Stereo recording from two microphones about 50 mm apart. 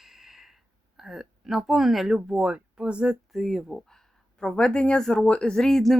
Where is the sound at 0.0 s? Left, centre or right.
Centre.